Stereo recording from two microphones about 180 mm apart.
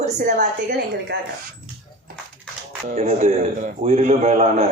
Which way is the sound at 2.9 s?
35° right (ahead or behind).